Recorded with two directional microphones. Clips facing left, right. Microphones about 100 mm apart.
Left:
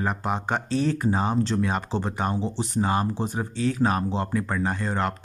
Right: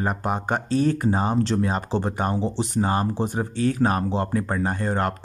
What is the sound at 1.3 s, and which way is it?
Speech, 60° right (ahead or behind).